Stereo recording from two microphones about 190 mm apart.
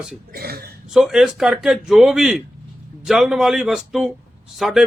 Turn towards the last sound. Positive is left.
turn(degrees=0)  # may be behind; listen again after turning